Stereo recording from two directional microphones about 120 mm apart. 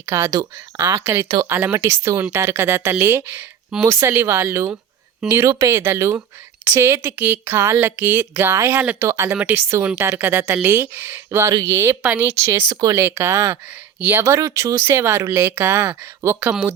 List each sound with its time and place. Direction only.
0.0 s speech: 20° right (ahead or behind)